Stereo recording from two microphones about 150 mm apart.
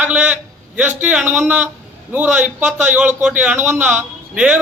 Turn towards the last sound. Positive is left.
turn(degrees=-10)  # may be behind; listen again after turning